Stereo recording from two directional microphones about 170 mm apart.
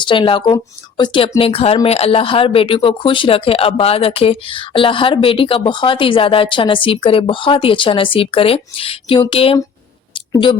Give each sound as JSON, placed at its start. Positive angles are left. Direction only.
{"t": 0.0, "sound": "speech", "side_deg": 30}